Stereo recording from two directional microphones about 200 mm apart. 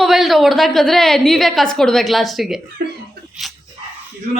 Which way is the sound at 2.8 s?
55° right (ahead or behind).